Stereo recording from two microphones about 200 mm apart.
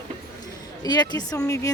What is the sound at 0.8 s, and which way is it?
Speech, 20° left (ahead or behind).